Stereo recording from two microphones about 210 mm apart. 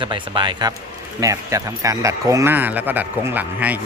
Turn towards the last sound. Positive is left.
turn(degrees=-10)  # may be behind; listen again after turning